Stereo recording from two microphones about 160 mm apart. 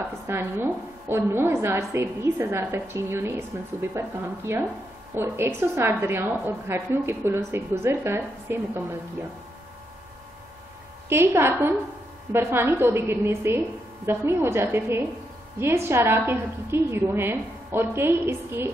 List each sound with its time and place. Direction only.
0.3 s a woman's voice: 15° right (ahead or behind)
11.1 s a woman's voice: 15° right (ahead or behind)